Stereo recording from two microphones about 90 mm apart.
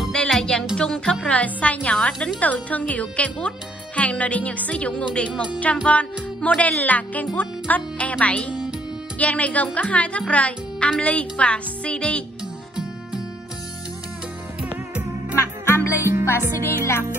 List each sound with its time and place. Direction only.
0.0 s music: 5° left (ahead or behind)
0.7 s a woman's voice: 10° left (ahead or behind)
14.6 s music: 15° right (ahead or behind)
15.3 s music: 30° left (ahead or behind)
16.0 s music: 30° right (ahead or behind)
16.3 s music: 30° left (ahead or behind)